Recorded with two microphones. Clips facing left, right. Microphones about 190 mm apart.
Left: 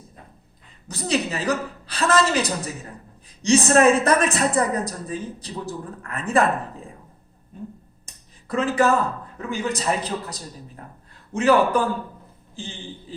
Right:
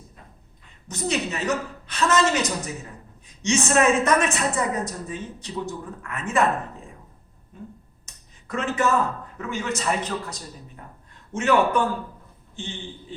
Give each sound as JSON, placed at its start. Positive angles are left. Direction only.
{"t": 0.9, "sound": "a woman's voice", "side_deg": 35}
{"t": 8.0, "sound": "a sound", "side_deg": 35}
{"t": 9.5, "sound": "a woman's voice", "side_deg": 35}